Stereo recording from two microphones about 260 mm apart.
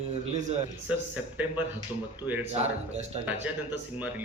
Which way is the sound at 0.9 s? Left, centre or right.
Centre.